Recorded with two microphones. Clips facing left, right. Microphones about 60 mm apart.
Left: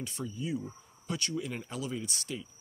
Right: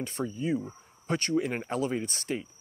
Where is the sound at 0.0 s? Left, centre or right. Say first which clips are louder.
Right 6 dB; right.